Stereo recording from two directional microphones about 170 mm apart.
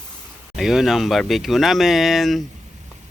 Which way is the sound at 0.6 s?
Centre (ahead or behind).